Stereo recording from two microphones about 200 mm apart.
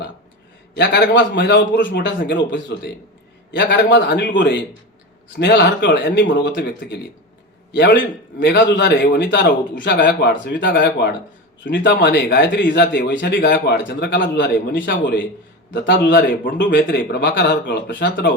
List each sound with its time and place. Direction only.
0.8 s speech: 60° left (ahead or behind)